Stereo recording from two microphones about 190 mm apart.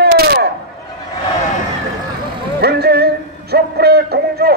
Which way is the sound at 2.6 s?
55° right (ahead or behind).